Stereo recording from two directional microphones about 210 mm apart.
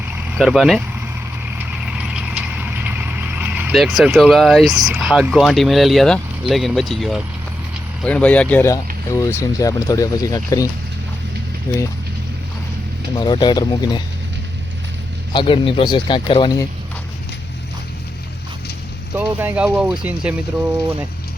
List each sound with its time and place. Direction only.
0.3 s speech: centre (ahead or behind)
1.5 s vehicle: 5° right (ahead or behind)
4.7 s speech: centre (ahead or behind); by 10.7 s 15° left (ahead or behind)
11.7 s speech: 15° left (ahead or behind)
13.1 s speech: 20° left (ahead or behind)
15.3 s speech: 25° left (ahead or behind)
19.1 s speech: 10° right (ahead or behind)